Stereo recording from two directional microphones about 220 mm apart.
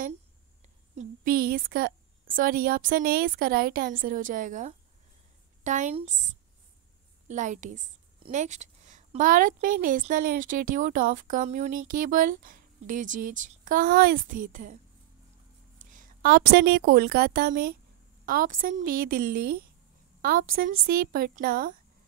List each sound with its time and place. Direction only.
0.9 s a woman's voice: 40° right (ahead or behind)
7.2 s a woman's voice: 35° right (ahead or behind)
15.8 s a woman's voice: 35° right (ahead or behind)